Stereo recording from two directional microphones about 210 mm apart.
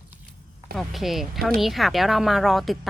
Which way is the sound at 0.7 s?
Centre (ahead or behind).